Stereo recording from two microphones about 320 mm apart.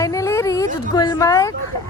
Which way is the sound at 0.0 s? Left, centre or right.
Centre.